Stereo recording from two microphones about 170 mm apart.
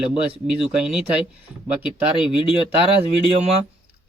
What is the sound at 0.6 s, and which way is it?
Speech, 5° right (ahead or behind).